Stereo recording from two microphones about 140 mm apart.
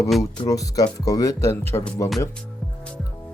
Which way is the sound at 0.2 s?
25° left (ahead or behind).